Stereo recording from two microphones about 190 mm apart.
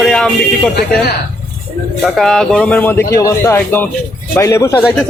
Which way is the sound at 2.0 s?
Centre (ahead or behind).